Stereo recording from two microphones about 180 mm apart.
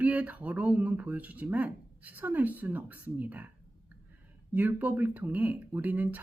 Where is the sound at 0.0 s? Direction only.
10° right (ahead or behind).